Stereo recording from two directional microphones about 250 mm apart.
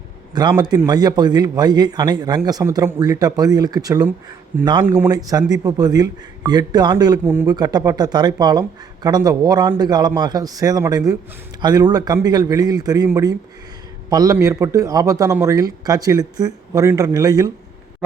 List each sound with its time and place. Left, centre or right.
0.3 s a man's voice: centre